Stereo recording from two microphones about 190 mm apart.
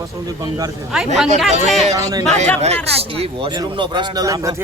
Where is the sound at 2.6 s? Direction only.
30° right (ahead or behind).